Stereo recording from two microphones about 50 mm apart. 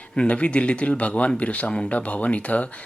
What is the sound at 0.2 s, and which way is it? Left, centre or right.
A man's voice, left.